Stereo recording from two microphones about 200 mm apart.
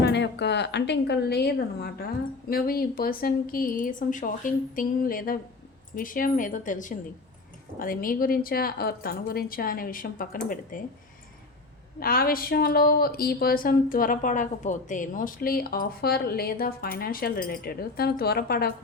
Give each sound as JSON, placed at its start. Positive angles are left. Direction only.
{"t": 0.0, "sound": "a woman's voice", "side_deg": 60}
{"t": 11.9, "sound": "a woman's voice", "side_deg": 50}